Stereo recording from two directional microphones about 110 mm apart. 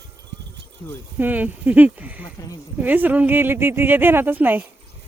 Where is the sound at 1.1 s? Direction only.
15° right (ahead or behind).